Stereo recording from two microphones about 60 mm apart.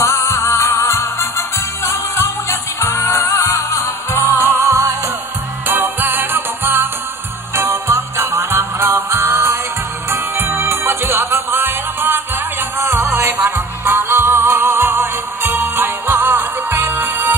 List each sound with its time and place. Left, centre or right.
0.0 s music: left
4.2 s music: right
7.7 s music: right
8.5 s music: right
13.8 s music: right